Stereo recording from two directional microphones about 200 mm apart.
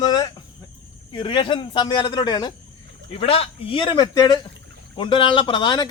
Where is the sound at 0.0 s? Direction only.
20° left (ahead or behind).